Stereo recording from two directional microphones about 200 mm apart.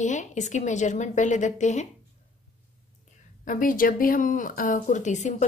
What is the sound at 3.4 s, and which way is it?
Speech, 40° left (ahead or behind).